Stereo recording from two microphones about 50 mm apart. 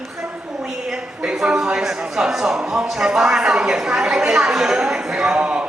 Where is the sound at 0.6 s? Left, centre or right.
Centre.